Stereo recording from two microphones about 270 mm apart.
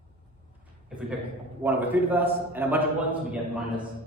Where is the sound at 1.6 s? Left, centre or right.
Centre.